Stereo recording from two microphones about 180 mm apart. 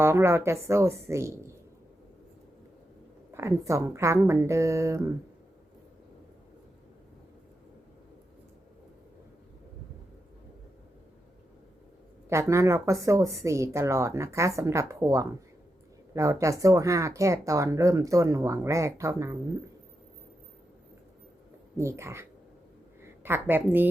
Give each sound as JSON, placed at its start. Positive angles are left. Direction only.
{"t": 0.0, "sound": "speech", "side_deg": -15}
{"t": 3.3, "sound": "speech", "side_deg": -15}
{"t": 12.3, "sound": "speech", "side_deg": -15}
{"t": 21.8, "sound": "speech", "side_deg": -15}